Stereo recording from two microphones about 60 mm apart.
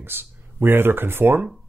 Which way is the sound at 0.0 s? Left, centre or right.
Right.